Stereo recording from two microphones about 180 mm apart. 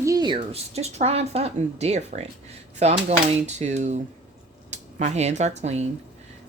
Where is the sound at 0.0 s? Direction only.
20° right (ahead or behind).